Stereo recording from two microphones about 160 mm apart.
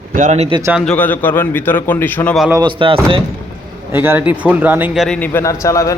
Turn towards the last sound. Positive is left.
turn(degrees=20)  # may be behind; listen again after turning